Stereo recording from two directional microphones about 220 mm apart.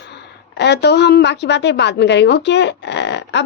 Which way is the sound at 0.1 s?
50° left (ahead or behind).